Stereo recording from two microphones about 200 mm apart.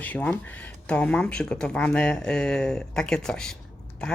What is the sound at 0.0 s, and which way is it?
Speech, 10° left (ahead or behind).